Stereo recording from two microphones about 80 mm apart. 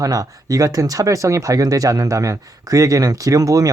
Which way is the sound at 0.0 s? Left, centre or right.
Right.